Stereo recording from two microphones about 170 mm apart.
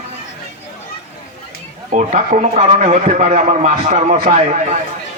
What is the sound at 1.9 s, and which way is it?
A man's voice, 45° right (ahead or behind).